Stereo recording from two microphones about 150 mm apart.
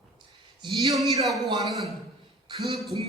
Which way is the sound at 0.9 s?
Centre (ahead or behind).